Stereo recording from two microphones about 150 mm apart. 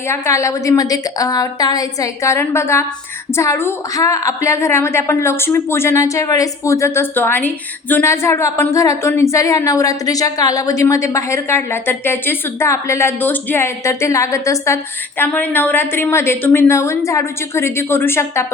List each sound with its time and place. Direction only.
0.1 s a woman's voice: 20° left (ahead or behind)